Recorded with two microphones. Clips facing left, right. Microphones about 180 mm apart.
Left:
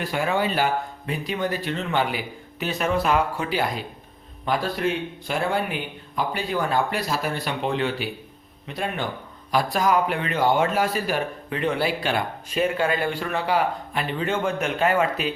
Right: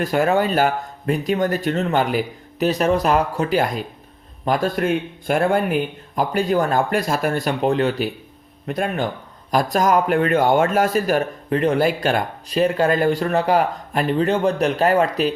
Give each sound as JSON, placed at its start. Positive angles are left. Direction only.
{"t": 0.0, "sound": "speech", "side_deg": -45}